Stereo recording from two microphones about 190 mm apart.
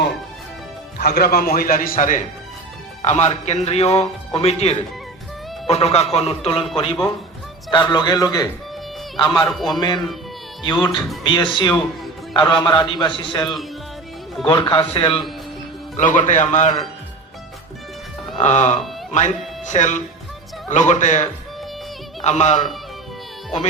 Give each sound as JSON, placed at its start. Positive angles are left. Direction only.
{"t": 0.9, "sound": "a man's voice", "side_deg": 55}
{"t": 7.7, "sound": "a man's voice", "side_deg": 25}
{"t": 9.5, "sound": "a man's voice", "side_deg": 0}
{"t": 10.6, "sound": "a man's voice", "side_deg": 20}
{"t": 16.0, "sound": "a man's voice", "side_deg": 40}
{"t": 18.3, "sound": "a man's voice", "side_deg": 40}